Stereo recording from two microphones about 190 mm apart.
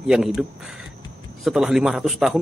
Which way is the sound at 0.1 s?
Centre (ahead or behind).